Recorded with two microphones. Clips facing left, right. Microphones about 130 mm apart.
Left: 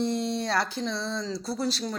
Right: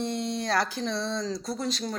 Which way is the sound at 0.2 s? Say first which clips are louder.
Left 2 dB; 30° left (ahead or behind).